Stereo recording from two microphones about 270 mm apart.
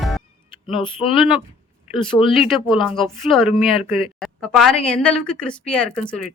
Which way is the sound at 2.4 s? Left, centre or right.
Centre.